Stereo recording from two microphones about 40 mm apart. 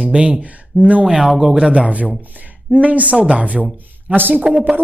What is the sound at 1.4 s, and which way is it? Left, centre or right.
Speech, centre.